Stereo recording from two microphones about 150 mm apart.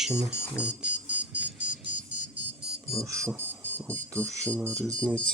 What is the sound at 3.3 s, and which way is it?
Insect, 15° right (ahead or behind).